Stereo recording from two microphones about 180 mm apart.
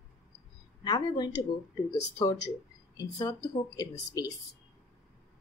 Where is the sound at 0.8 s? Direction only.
25° left (ahead or behind).